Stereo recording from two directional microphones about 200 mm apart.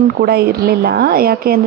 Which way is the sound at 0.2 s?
50° right (ahead or behind).